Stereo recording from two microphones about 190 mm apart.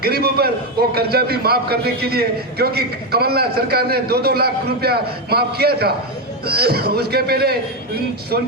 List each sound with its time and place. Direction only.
0.0 s a man's voice: 55° right (ahead or behind)